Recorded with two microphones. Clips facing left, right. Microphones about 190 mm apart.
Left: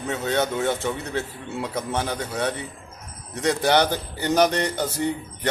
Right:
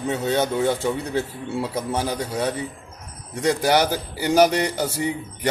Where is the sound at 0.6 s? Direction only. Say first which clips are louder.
Right 3 dB; 10° right (ahead or behind).